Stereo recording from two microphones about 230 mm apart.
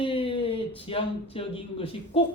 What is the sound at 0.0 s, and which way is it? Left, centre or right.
Speech, left.